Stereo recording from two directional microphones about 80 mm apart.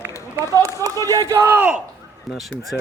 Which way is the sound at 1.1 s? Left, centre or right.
Right.